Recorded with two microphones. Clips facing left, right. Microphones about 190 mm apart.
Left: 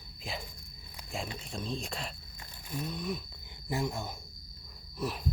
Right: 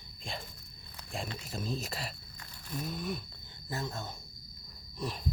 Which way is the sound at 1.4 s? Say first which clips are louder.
Even; 5° right (ahead or behind).